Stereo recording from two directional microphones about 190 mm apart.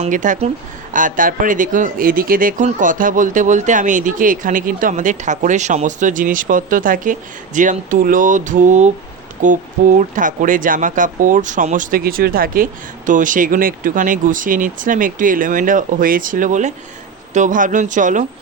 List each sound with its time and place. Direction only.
0.0 s speech: 40° right (ahead or behind)